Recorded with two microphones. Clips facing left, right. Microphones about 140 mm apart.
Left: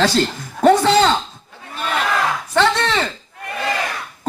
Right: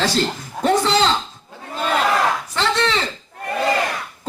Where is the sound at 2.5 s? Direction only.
55° left (ahead or behind).